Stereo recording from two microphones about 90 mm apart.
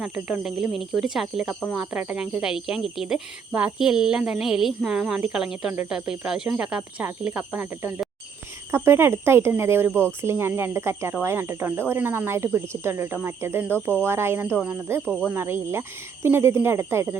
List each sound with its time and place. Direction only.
0.0 s speech: 5° right (ahead or behind); by 9.9 s 25° right (ahead or behind)
9.9 s speech: 15° left (ahead or behind)
10.2 s speech: 25° right (ahead or behind)
15.1 s speech: 10° right (ahead or behind)
15.4 s speech: 25° right (ahead or behind)